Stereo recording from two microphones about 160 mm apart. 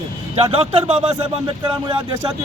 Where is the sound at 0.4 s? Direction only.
35° right (ahead or behind).